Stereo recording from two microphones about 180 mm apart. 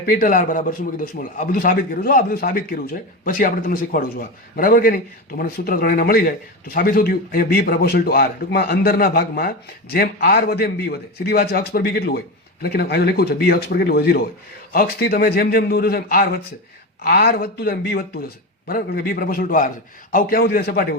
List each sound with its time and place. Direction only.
0.0 s a man's voice: 50° left (ahead or behind)